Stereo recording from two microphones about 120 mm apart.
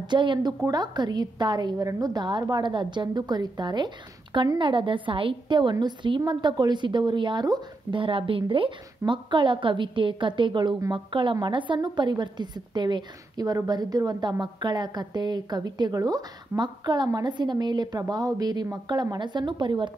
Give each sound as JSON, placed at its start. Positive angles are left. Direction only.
{"t": 0.0, "sound": "a woman's voice", "side_deg": -40}